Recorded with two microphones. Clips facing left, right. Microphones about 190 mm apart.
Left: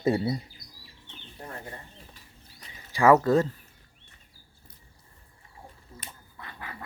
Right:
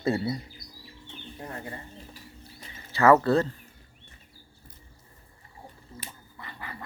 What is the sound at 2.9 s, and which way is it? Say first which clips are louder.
Speech: even; 10° left (ahead or behind).